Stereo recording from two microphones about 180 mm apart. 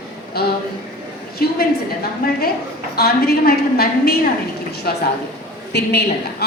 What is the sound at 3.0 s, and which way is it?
A woman's voice, 60° left (ahead or behind).